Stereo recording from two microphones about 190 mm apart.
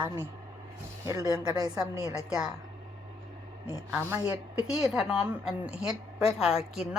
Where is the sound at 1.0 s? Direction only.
20° right (ahead or behind).